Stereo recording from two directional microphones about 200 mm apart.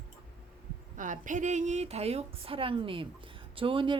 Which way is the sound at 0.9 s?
40° right (ahead or behind).